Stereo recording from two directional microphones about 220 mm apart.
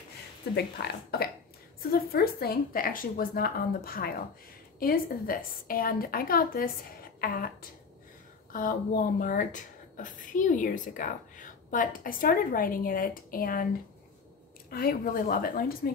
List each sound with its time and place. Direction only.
0.8 s speech: 50° left (ahead or behind)
14.7 s speech: 40° left (ahead or behind)